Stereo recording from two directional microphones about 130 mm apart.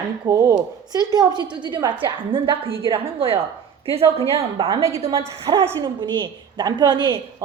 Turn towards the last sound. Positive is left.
turn(degrees=-35)  # may be behind; listen again after turning